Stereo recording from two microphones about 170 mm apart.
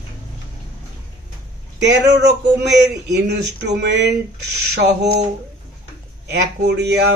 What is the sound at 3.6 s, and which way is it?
Speech, 90° right.